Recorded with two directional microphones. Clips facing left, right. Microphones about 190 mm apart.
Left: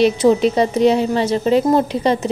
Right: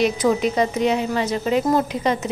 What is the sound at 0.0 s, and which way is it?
A woman's voice, 30° left (ahead or behind).